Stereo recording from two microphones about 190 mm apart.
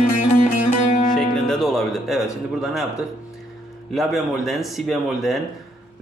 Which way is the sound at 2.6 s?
Centre (ahead or behind).